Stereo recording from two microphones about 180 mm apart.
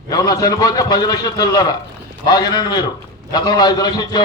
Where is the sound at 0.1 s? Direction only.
20° left (ahead or behind).